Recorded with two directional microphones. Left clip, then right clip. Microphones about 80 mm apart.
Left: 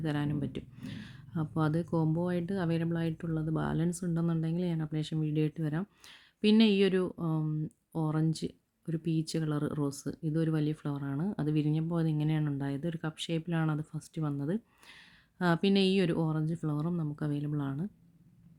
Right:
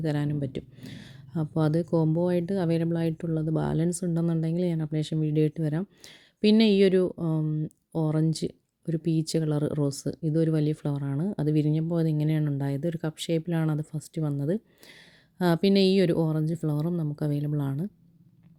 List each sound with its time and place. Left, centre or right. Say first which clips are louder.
0.0 s speech: right 4 dB; centre
0.9 s speech: right 5 dB; right